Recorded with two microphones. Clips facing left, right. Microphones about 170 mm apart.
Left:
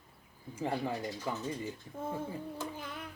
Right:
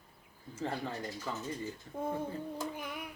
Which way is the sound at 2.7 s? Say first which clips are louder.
Right 1 dB; 15° right (ahead or behind).